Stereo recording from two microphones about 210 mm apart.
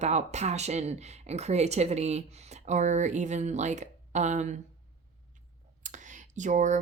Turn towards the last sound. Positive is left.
turn(degrees=-35)  # may be behind; listen again after turning